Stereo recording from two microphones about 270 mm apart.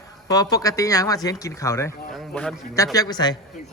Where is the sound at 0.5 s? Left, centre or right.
Centre.